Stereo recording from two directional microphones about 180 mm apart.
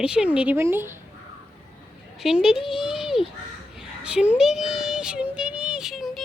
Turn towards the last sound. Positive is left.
turn(degrees=0)  # may be behind; listen again after turning